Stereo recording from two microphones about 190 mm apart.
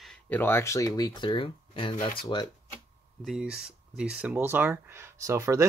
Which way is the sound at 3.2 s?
Centre (ahead or behind).